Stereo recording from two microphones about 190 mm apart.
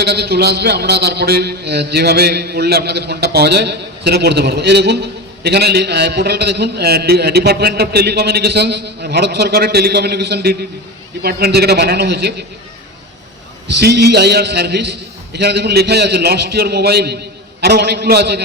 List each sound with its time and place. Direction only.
0.0 s a man's voice: 60° right (ahead or behind)
13.7 s a man's voice: 60° right (ahead or behind)